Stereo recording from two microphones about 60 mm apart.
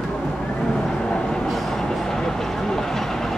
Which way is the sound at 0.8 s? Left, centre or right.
Centre.